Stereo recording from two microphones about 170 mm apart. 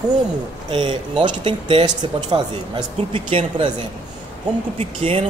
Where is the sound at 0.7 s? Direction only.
30° right (ahead or behind).